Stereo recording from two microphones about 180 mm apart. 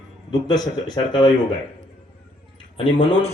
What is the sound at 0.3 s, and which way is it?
A man's voice, 25° left (ahead or behind).